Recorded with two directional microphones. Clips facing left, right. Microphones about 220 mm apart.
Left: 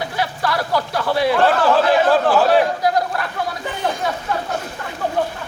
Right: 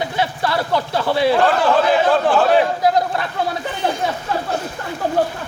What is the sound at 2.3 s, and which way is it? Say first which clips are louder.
Speech: even; 5° left (ahead or behind).